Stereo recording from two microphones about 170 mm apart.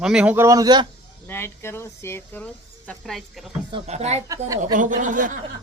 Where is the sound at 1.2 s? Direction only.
15° left (ahead or behind).